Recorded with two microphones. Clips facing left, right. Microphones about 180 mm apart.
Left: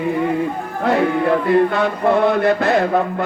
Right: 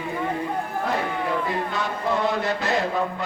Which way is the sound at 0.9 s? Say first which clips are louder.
Left 11 dB; 75° left (ahead or behind).